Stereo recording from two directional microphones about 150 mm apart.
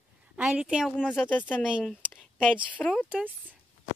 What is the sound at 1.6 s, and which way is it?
Speech, 5° right (ahead or behind).